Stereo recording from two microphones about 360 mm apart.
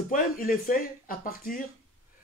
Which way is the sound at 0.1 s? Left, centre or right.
Left.